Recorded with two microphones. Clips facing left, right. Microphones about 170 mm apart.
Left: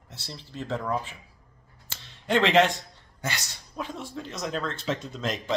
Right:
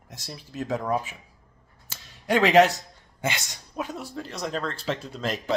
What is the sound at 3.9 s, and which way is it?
Speech, 40° right (ahead or behind).